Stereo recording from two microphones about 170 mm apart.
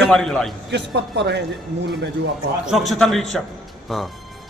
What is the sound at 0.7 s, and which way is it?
A man's voice, 85° right.